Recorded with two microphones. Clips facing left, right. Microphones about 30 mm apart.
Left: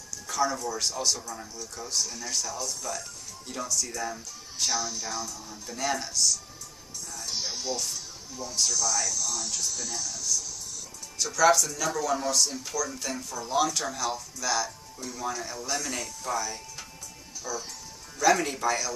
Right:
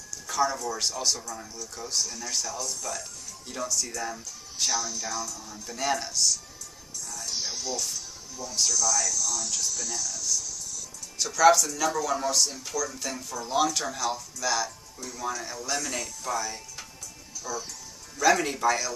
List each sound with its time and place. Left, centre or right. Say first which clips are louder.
0.3 s a sound: right 1 dB; centre
0.7 s speech: even; centre
4.7 s speech: right 1 dB; centre
5.7 s speech: right 2 dB; centre
7.2 s music: even; centre
8.4 s speech: right 1 dB; left
11.1 s speech: right 2 dB; centre